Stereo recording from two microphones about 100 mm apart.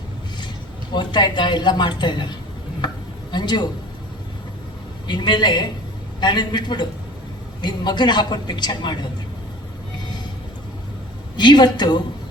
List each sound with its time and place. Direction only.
0.9 s a woman's voice: 50° left (ahead or behind)
3.3 s a woman's voice: 45° left (ahead or behind)
5.0 s a woman's voice: 50° left (ahead or behind)
11.3 s a woman's voice: 45° left (ahead or behind)